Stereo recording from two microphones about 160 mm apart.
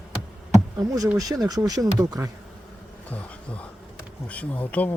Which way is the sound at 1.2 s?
25° right (ahead or behind).